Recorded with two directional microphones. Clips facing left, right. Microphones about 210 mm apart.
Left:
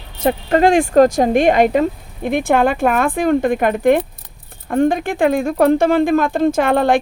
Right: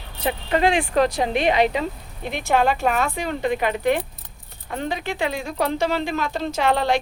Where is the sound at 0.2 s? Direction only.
45° left (ahead or behind).